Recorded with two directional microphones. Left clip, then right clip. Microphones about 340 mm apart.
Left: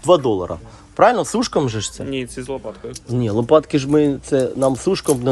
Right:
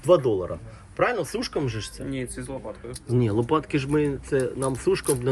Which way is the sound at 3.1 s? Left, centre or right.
Centre.